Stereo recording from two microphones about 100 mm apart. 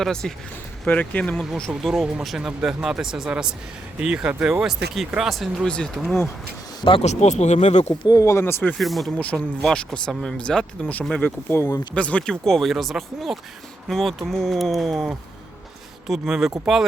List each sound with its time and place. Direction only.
0.0 s speech: 5° left (ahead or behind)
0.9 s speech: 15° left (ahead or behind); by 5.5 s centre (ahead or behind)
5.6 s speech: 10° left (ahead or behind)
6.8 s speech: 75° left (ahead or behind)
8.0 s speech: 35° left (ahead or behind)
8.8 s speech: centre (ahead or behind)
9.1 s speech: 15° left (ahead or behind)
11.9 s speech: 10° left (ahead or behind); by 16.8 s 5° right (ahead or behind)